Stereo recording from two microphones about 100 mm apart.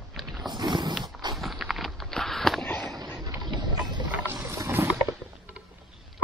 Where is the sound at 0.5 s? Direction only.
45° right (ahead or behind).